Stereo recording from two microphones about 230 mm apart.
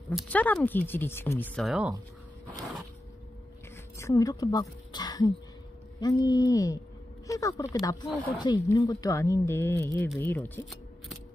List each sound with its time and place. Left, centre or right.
0.1 s speech: centre
3.9 s speech: centre